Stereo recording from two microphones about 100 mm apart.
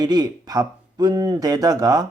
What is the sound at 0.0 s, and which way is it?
Speech, 45° right (ahead or behind).